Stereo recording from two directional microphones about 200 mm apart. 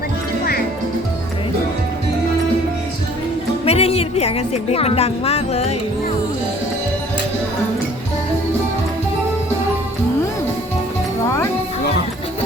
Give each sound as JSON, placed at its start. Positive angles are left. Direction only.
{"t": 3.7, "sound": "a woman's voice", "side_deg": 30}